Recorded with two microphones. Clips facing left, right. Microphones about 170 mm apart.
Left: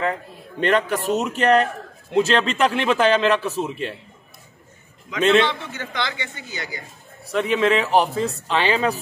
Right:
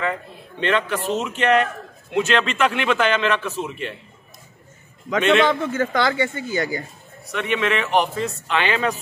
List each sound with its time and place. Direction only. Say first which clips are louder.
0.6 s a man's voice: left 2 dB; 40° left (ahead or behind)
5.5 s speech: right 9 dB; 45° right (ahead or behind)
7.2 s a man's voice: left 3 dB; 30° left (ahead or behind)